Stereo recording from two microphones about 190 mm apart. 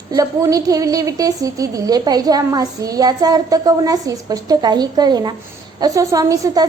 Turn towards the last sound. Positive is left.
turn(degrees=-20)  # may be behind; listen again after turning